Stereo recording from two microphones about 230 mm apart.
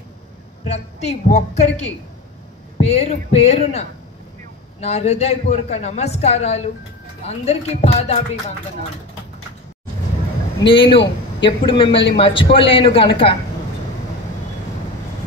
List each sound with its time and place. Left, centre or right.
0.7 s a man's voice: left
10.6 s a man's voice: left